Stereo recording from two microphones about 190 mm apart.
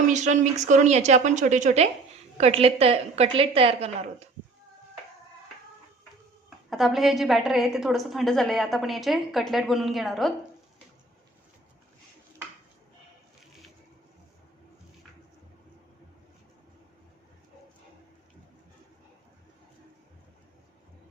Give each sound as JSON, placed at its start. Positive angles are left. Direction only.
{"t": 0.1, "sound": "a woman's voice", "side_deg": -40}
{"t": 6.7, "sound": "a woman's voice", "side_deg": 0}